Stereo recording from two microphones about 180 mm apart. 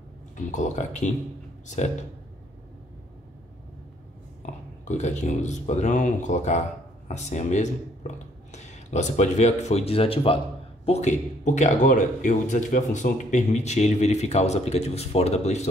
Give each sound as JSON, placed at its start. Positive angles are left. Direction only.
{"t": 0.5, "sound": "a man's voice", "side_deg": 40}
{"t": 4.8, "sound": "a man's voice", "side_deg": 40}